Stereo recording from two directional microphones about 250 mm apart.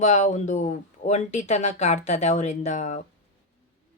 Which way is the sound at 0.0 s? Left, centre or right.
Left.